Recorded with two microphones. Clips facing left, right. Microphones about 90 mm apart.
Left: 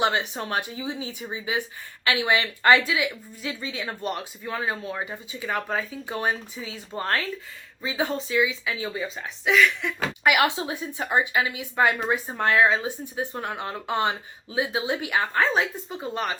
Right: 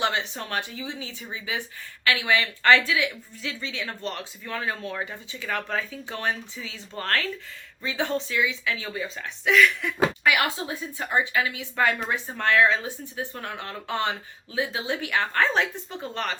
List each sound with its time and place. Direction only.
0.0 s a woman's voice: 20° left (ahead or behind); by 9.9 s centre (ahead or behind)
10.2 s a woman's voice: 20° left (ahead or behind)